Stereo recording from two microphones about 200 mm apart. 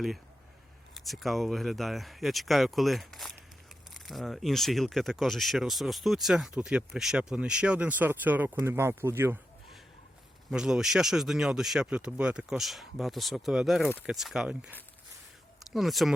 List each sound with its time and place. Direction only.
0.9 s speech: centre (ahead or behind)
10.5 s speech: 5° right (ahead or behind)
13.8 s speech: 10° left (ahead or behind)
14.1 s speech: centre (ahead or behind)